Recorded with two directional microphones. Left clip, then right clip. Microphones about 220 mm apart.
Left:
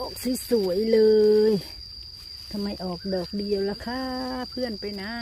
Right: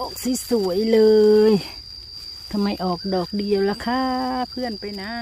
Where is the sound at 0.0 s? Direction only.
10° right (ahead or behind).